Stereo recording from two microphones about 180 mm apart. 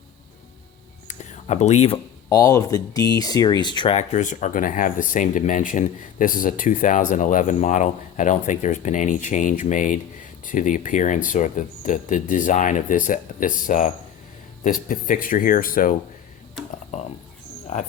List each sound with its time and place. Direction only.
1.0 s whispering: 40° left (ahead or behind)
2.3 s speech: 20° left (ahead or behind); by 16.0 s 50° left (ahead or behind)
17.7 s speech: 40° left (ahead or behind)